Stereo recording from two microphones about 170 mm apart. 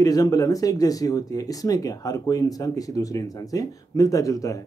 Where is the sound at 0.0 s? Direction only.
20° left (ahead or behind).